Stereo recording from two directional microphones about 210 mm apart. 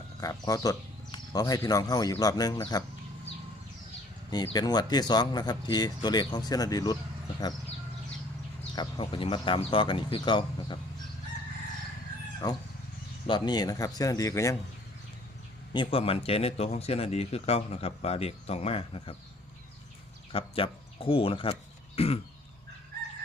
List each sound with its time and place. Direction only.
0.2 s speech: 15° left (ahead or behind)
4.3 s a man's voice: 20° left (ahead or behind)
8.7 s a man's voice: 20° left (ahead or behind)
12.4 s speech: 15° left (ahead or behind)
15.7 s a man's voice: 25° left (ahead or behind)
20.3 s speech: 25° left (ahead or behind)